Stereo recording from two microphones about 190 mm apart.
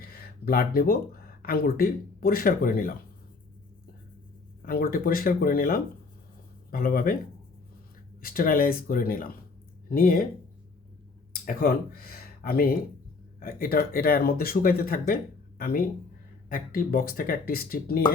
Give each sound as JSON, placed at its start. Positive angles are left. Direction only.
{"t": 0.0, "sound": "speech", "side_deg": 50}
{"t": 4.6, "sound": "speech", "side_deg": 50}
{"t": 8.2, "sound": "speech", "side_deg": 50}
{"t": 11.4, "sound": "speech", "side_deg": 50}